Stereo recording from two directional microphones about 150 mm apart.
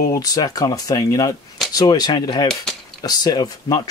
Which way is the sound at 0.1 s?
25° left (ahead or behind).